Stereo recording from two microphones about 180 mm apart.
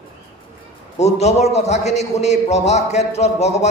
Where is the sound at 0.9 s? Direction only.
35° left (ahead or behind).